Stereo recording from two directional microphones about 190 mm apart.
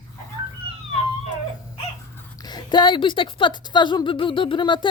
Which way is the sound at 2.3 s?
20° left (ahead or behind).